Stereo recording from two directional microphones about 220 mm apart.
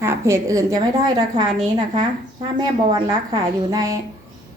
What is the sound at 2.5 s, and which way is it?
A woman's voice, 15° right (ahead or behind).